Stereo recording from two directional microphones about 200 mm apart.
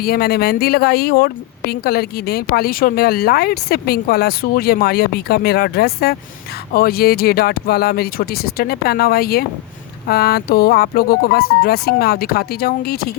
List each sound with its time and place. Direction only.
0.0 s speech: 50° left (ahead or behind)